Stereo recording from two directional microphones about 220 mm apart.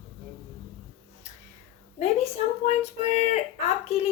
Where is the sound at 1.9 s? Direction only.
30° left (ahead or behind).